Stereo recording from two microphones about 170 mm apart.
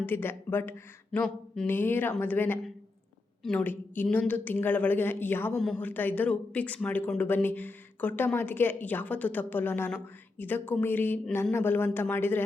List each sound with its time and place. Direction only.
0.0 s speech: 10° left (ahead or behind)